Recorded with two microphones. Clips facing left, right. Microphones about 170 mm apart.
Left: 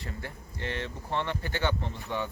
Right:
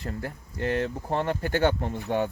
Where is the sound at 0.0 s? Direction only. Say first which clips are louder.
Right 6 dB; 40° right (ahead or behind).